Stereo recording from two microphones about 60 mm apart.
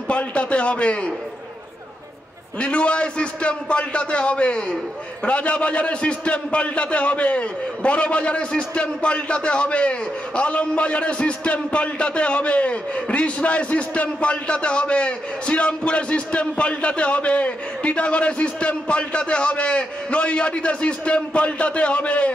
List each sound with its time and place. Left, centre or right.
0.1 s a man's voice: left
2.6 s a man's voice: centre